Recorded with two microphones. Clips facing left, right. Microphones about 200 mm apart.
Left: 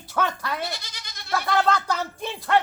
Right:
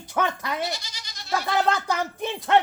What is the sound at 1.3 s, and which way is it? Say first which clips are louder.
Speech: left 1 dB; 15° right (ahead or behind).